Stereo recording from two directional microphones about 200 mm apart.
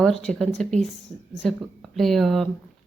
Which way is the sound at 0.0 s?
Centre (ahead or behind).